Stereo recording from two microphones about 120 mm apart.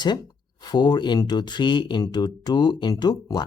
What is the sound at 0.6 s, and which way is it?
Speech, 35° left (ahead or behind).